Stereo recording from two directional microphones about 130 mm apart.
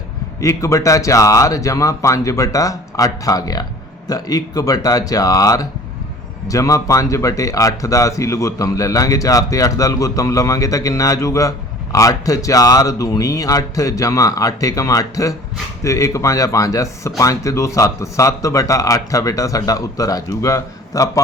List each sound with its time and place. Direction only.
0.3 s speech: 25° left (ahead or behind)